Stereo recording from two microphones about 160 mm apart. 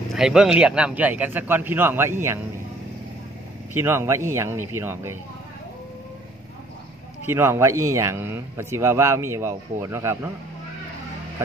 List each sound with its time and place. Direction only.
0.1 s speech: 5° right (ahead or behind)
3.7 s speech: 15° right (ahead or behind)
7.2 s speech: 15° right (ahead or behind)